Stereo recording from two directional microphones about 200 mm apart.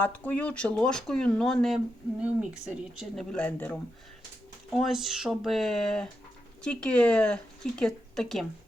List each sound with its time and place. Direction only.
0.0 s speech: 10° left (ahead or behind)